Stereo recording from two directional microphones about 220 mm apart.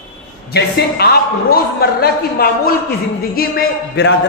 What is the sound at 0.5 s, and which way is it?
A man's voice, 45° left (ahead or behind).